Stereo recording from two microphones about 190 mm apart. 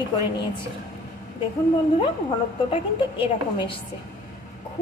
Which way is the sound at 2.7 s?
25° left (ahead or behind).